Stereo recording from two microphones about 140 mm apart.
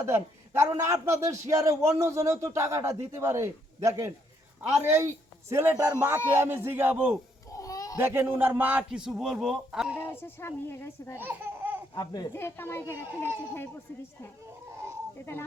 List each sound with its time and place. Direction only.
0.0 s a man's voice: 20° right (ahead or behind)
7.5 s a sound: 25° left (ahead or behind)
7.9 s a man's voice: 15° right (ahead or behind)
10.0 s a child's voice: 15° left (ahead or behind)
11.2 s speech: 15° right (ahead or behind)
11.9 s speech: 30° left (ahead or behind)
12.3 s a child's voice: 15° left (ahead or behind)